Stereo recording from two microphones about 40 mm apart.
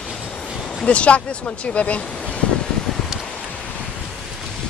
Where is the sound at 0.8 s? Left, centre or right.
Left.